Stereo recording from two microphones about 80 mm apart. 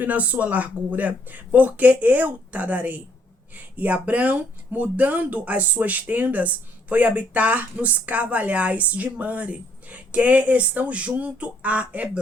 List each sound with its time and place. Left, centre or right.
0.0 s speech: centre